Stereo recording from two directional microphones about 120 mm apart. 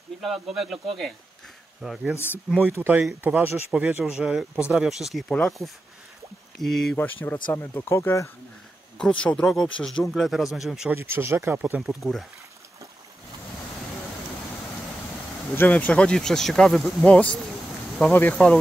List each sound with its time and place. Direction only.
0.2 s speech: centre (ahead or behind)
2.1 s speech: 20° left (ahead or behind)
2.5 s speech: 20° right (ahead or behind); by 7.0 s centre (ahead or behind)
7.0 s speech: 15° left (ahead or behind)
8.9 s speech: 10° left (ahead or behind)
10.9 s speech: 20° right (ahead or behind)
11.8 s speech: centre (ahead or behind)
15.5 s speech: 15° left (ahead or behind)
18.3 s speech: centre (ahead or behind)